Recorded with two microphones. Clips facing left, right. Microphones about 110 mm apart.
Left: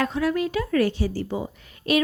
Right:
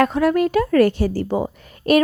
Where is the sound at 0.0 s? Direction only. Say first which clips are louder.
Right 7 dB; 55° right (ahead or behind).